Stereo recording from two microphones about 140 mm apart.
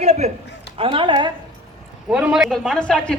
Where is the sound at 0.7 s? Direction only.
40° right (ahead or behind).